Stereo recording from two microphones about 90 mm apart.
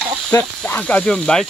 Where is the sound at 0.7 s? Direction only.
15° left (ahead or behind).